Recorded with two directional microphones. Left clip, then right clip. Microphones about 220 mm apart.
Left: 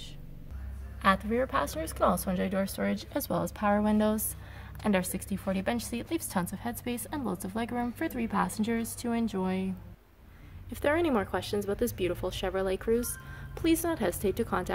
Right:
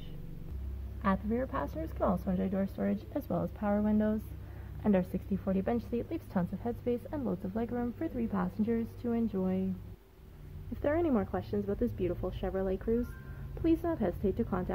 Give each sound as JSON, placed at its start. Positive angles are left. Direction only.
{"t": 1.0, "sound": "a woman's voice", "side_deg": 10}
{"t": 4.8, "sound": "a woman's voice", "side_deg": 5}
{"t": 10.8, "sound": "a woman's voice", "side_deg": 10}